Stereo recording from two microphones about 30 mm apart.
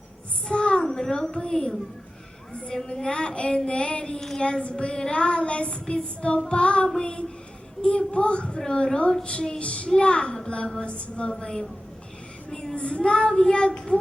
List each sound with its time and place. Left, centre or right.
0.5 s a sound: left
1.3 s a woman's voice: left
3.0 s child singing: left
4.4 s a woman's voice: left
4.6 s child singing: left
12.7 s child singing: left